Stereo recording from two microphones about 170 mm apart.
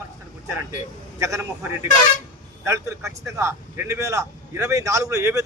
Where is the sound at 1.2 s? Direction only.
15° right (ahead or behind).